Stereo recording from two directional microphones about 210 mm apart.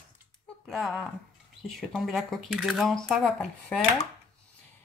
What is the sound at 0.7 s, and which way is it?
Speech, centre (ahead or behind).